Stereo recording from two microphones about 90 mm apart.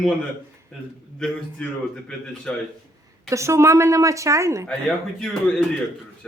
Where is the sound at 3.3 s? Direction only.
30° right (ahead or behind).